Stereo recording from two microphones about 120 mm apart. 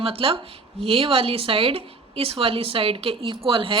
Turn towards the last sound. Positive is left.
turn(degrees=-50)  # may be behind; listen again after turning